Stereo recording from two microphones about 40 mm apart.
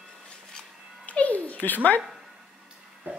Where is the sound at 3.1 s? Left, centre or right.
Right.